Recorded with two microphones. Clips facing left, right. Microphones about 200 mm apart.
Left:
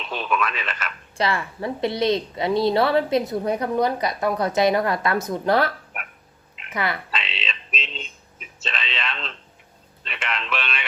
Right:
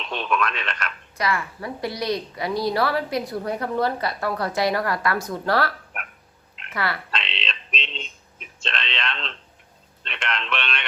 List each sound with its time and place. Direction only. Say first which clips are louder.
0.0 s speech: even; centre (ahead or behind)
1.1 s a woman's voice: left 2 dB; 30° left (ahead or behind)
5.9 s dog: even; centre (ahead or behind)
6.7 s a woman's voice: left 1 dB; 20° left (ahead or behind)
7.1 s a sound: even; 5° left (ahead or behind)
10.0 s speech: even; centre (ahead or behind)